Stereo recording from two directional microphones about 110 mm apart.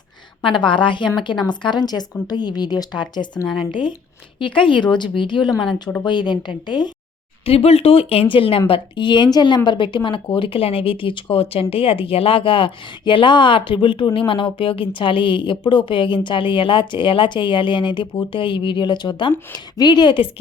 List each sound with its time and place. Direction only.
0.4 s speech: 50° left (ahead or behind)
7.4 s speech: 65° left (ahead or behind); by 20.3 s 50° left (ahead or behind)